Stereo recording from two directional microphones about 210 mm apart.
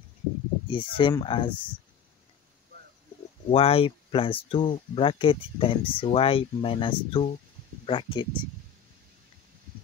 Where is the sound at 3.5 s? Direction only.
25° left (ahead or behind).